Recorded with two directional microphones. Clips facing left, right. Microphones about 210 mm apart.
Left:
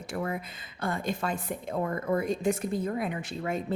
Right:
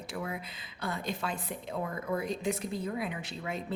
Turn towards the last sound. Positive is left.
turn(degrees=50)  # may be behind; listen again after turning